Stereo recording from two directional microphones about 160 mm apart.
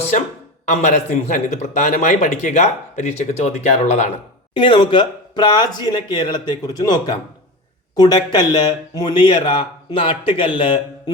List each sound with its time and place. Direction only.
0.6 s a man's voice: 45° left (ahead or behind)
4.5 s speech: 30° left (ahead or behind)